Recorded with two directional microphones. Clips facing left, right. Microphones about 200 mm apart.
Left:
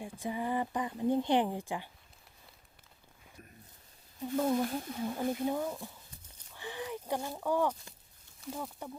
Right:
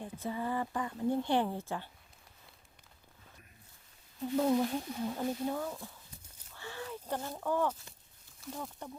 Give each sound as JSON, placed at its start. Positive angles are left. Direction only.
{"t": 0.0, "sound": "speech", "side_deg": 15}
{"t": 4.2, "sound": "speech", "side_deg": 0}
{"t": 6.6, "sound": "a sound", "side_deg": 15}
{"t": 7.3, "sound": "speech", "side_deg": 10}